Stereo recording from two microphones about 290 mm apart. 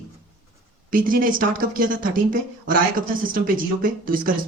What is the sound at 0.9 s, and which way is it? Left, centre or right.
Speech, right.